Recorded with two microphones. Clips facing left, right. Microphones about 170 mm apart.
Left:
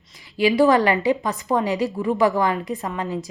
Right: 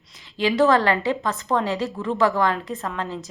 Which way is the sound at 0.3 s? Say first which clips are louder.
Left 2 dB; 10° left (ahead or behind).